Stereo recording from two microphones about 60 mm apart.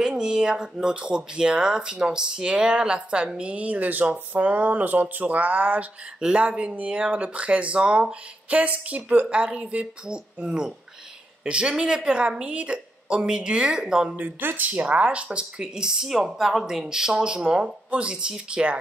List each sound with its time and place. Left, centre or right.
0.0 s speech: centre
14.1 s speech: right